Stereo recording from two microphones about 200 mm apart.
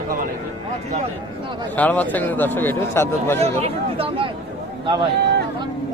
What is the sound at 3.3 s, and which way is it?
Speech, 30° right (ahead or behind).